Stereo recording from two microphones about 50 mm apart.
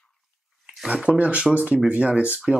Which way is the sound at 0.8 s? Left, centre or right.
Right.